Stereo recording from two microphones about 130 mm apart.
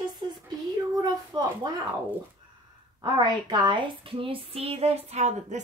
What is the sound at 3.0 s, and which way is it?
Speech, 35° right (ahead or behind).